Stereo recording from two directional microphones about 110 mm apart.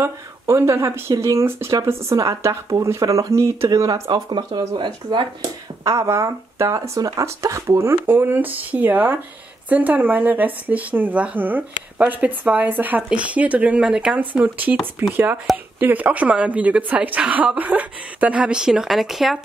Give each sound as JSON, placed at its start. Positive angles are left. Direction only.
{"t": 0.0, "sound": "speech", "side_deg": -25}
{"t": 5.9, "sound": "speech", "side_deg": -25}